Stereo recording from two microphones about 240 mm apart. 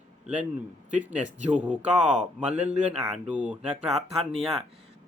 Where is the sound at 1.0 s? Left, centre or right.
Centre.